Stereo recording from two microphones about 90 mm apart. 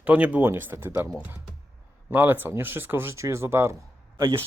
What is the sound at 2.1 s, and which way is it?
Speech, 25° right (ahead or behind).